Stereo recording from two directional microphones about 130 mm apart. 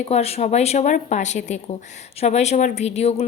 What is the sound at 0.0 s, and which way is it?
A woman's voice, 50° left (ahead or behind).